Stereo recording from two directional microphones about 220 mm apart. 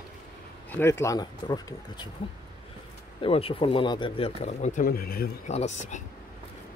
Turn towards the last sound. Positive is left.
turn(degrees=35)  # may be behind; listen again after turning